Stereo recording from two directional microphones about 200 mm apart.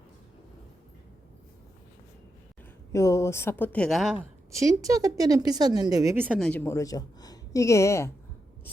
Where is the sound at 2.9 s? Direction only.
15° left (ahead or behind); by 4.2 s centre (ahead or behind).